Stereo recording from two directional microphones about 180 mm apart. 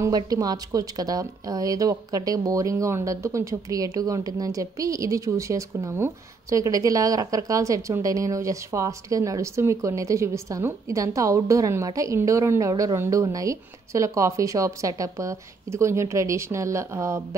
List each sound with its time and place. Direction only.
0.0 s speech: 20° right (ahead or behind)